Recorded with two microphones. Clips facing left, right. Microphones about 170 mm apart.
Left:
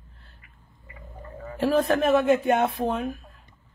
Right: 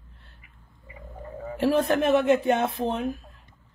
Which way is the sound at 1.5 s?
25° right (ahead or behind).